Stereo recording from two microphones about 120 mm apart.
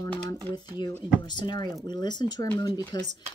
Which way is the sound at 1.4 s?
35° left (ahead or behind).